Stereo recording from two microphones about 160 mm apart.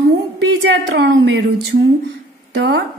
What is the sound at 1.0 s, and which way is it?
Speech, 90° right.